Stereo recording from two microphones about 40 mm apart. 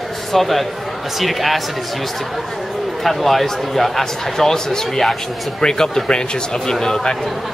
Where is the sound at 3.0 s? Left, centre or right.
Centre.